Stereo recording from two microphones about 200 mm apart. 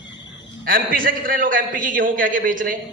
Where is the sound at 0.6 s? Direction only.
45° right (ahead or behind).